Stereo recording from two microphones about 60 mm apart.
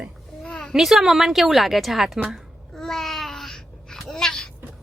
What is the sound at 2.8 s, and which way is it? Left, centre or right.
Babbling, centre.